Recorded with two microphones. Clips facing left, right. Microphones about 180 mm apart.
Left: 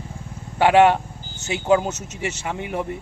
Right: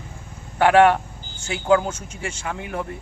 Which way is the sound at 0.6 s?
20° left (ahead or behind).